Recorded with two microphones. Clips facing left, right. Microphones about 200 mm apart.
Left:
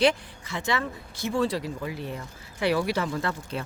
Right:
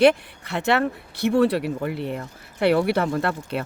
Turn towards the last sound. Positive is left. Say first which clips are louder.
# right 5 dB
turn(degrees=-65)  # may be behind; listen again after turning